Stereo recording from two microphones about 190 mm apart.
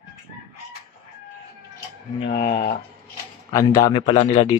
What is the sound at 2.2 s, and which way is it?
Speech, 55° left (ahead or behind).